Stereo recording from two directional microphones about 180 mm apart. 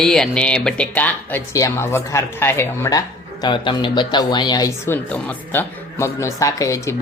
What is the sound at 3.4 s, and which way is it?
Speech, 25° left (ahead or behind).